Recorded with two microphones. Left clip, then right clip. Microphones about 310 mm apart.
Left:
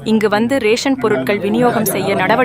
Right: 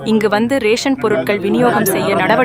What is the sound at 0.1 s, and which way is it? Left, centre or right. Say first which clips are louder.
Speech: even; centre.